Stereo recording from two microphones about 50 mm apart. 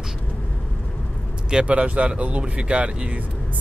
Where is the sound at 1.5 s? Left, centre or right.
Right.